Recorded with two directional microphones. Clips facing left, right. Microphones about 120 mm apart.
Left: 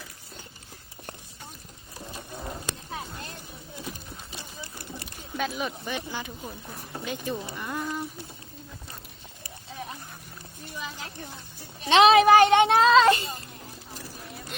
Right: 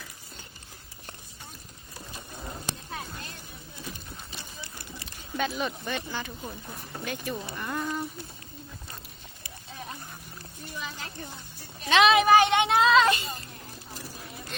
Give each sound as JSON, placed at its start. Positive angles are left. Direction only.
{"t": 2.9, "sound": "a sound", "side_deg": 15}
{"t": 5.0, "sound": "speech", "side_deg": 5}
{"t": 6.4, "sound": "speech", "side_deg": 0}
{"t": 6.9, "sound": "speech", "side_deg": 20}
{"t": 7.5, "sound": "speech", "side_deg": 5}
{"t": 10.8, "sound": "a sound", "side_deg": 5}
{"t": 11.9, "sound": "speech", "side_deg": 35}
{"t": 12.7, "sound": "child singing", "side_deg": 30}